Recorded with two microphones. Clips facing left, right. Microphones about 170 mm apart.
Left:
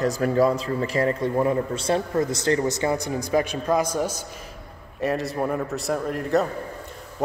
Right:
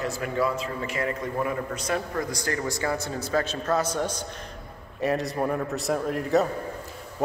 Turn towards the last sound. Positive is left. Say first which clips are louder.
# left 1 dB
turn(degrees=0)  # may be behind; listen again after turning